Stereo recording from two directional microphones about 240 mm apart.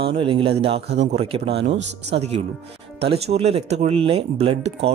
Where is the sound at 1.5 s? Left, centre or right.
Right.